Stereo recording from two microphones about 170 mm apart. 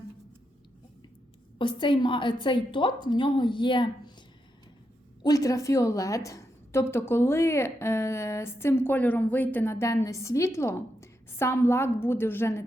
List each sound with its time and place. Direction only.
1.5 s a woman's voice: 30° left (ahead or behind)
5.2 s a woman's voice: 20° left (ahead or behind)